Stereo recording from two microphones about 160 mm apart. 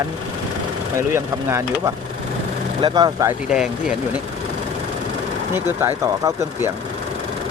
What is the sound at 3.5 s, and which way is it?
Speech, 5° right (ahead or behind).